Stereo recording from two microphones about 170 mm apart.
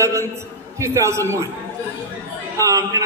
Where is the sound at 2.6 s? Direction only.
20° right (ahead or behind).